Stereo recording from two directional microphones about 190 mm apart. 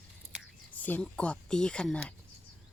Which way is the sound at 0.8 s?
10° left (ahead or behind).